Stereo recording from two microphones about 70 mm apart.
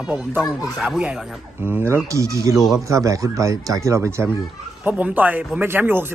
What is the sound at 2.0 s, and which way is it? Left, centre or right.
Speech, right.